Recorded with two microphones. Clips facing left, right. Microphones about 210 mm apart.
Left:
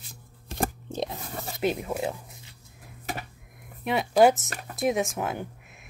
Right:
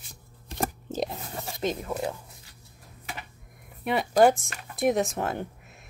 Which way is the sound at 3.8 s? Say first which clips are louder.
Even; centre (ahead or behind).